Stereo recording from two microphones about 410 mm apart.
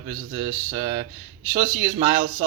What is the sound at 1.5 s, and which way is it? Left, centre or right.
Speech, centre.